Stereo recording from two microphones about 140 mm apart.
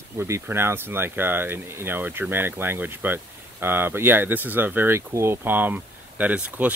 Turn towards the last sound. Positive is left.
turn(degrees=-10)  # may be behind; listen again after turning